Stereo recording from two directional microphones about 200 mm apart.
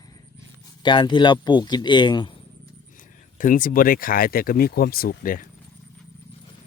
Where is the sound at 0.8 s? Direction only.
25° left (ahead or behind).